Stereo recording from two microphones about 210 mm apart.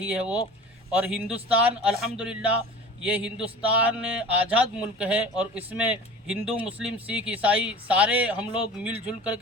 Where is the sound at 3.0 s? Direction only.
5° right (ahead or behind).